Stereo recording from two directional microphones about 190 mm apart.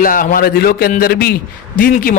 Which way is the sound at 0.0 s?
45° left (ahead or behind).